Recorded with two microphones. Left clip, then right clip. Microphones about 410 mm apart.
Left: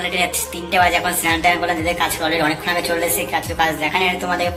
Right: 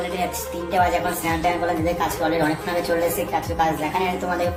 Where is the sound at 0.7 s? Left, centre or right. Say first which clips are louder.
Left 4 dB; right.